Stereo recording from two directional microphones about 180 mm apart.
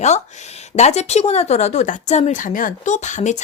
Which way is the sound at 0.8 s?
40° left (ahead or behind).